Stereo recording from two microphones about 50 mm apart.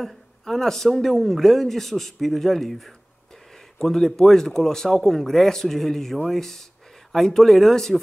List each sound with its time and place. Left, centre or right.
0.0 s a man's voice: centre